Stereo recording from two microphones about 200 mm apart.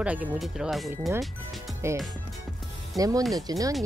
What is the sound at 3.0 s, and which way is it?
Speech, 15° right (ahead or behind).